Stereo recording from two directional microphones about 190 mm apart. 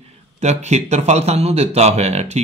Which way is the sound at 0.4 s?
35° right (ahead or behind).